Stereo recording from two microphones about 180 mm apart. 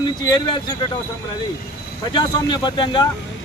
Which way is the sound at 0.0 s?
25° left (ahead or behind).